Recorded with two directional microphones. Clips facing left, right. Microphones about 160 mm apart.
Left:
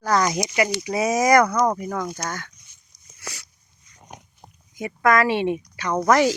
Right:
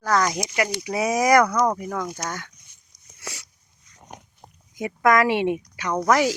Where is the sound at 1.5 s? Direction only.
10° left (ahead or behind).